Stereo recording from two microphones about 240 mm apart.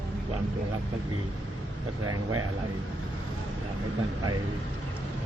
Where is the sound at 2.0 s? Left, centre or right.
Right.